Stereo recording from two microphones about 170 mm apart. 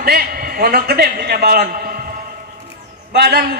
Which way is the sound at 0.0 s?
60° right (ahead or behind).